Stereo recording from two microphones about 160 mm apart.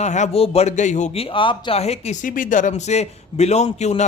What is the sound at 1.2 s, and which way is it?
A man's voice, 30° left (ahead or behind).